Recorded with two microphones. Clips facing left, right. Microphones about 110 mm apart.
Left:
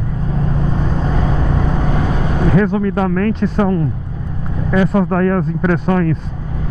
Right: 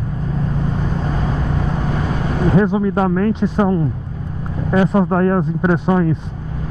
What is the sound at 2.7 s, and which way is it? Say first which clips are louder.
Speech: even; 15° right (ahead or behind).